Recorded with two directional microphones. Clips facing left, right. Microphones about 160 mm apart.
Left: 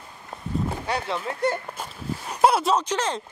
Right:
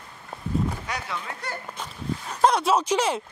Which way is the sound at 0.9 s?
30° left (ahead or behind).